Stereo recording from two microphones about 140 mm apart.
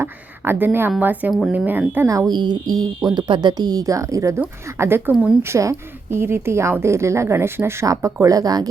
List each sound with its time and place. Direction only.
0.0 s a woman's voice: 15° right (ahead or behind)